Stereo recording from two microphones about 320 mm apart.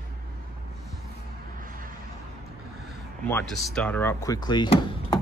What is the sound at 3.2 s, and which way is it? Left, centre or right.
Speech, centre.